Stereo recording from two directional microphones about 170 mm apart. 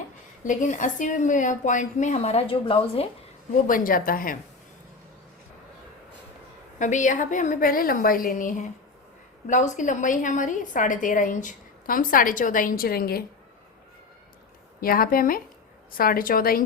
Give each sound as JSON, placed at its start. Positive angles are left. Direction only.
{"t": 0.4, "sound": "a woman's voice", "side_deg": 50}
{"t": 3.7, "sound": "a woman's voice", "side_deg": 55}
{"t": 6.7, "sound": "a woman's voice", "side_deg": 45}
{"t": 14.8, "sound": "a woman's voice", "side_deg": 60}